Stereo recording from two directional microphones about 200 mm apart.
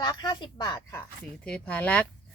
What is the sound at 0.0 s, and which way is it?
Speech, 20° left (ahead or behind).